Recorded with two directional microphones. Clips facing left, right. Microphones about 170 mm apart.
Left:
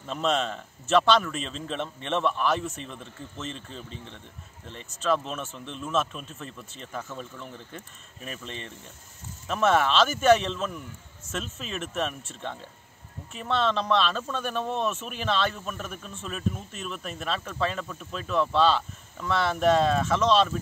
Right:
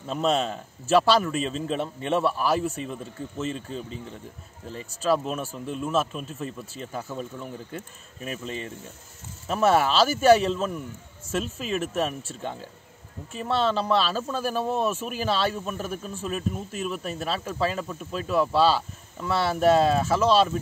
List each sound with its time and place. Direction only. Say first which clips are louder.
0.0 s speech: right 3 dB; 5° right (ahead or behind)
13.4 s speech: right 2 dB; 5° right (ahead or behind)
15.7 s a man's voice: right 5 dB; 35° right (ahead or behind)
16.0 s speech: right 3 dB; 10° right (ahead or behind)